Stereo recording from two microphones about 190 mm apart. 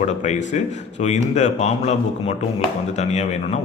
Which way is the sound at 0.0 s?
40° left (ahead or behind).